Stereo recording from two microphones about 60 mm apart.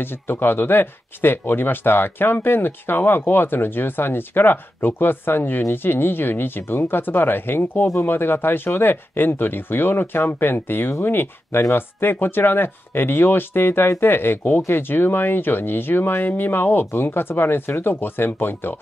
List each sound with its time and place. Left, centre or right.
0.0 s speech: left